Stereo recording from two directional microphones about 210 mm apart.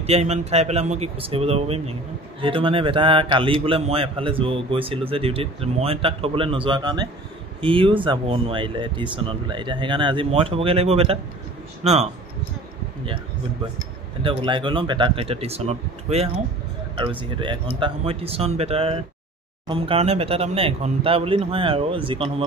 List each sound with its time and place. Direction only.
0.0 s a man's voice: 30° right (ahead or behind)
14.2 s a man's voice: 25° right (ahead or behind)